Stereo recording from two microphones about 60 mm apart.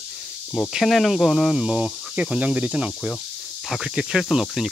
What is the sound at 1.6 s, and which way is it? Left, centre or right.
Speech, centre.